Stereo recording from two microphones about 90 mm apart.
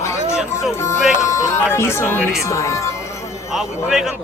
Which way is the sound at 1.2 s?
35° left (ahead or behind).